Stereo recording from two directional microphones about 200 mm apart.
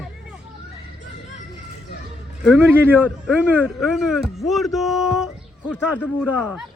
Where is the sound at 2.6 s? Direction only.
10° right (ahead or behind).